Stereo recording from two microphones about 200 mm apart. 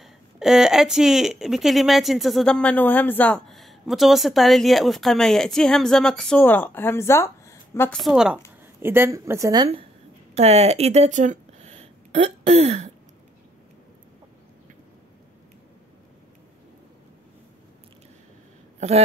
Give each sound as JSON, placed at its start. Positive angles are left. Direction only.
{"t": 0.0, "sound": "speech", "side_deg": 0}
{"t": 8.0, "sound": "a woman's voice", "side_deg": -5}
{"t": 10.3, "sound": "speech", "side_deg": -30}